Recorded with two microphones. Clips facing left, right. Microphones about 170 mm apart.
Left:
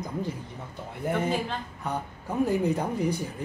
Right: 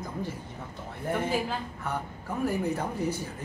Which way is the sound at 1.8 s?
20° left (ahead or behind).